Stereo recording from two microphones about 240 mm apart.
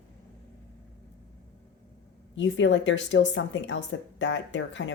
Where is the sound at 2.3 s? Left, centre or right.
Left.